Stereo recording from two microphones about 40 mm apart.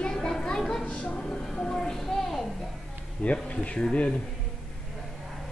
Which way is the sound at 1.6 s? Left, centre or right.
Centre.